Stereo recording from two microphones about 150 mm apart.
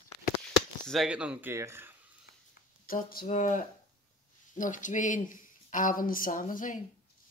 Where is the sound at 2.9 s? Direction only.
75° left (ahead or behind).